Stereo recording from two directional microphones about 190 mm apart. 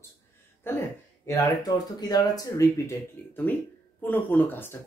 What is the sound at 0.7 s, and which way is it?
Speech, 15° left (ahead or behind).